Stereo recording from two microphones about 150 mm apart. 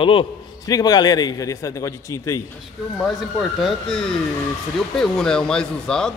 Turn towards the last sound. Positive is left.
turn(degrees=5)  # may be behind; listen again after turning